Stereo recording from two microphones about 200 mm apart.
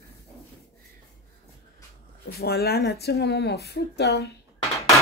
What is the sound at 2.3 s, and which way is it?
Speech, 50° left (ahead or behind).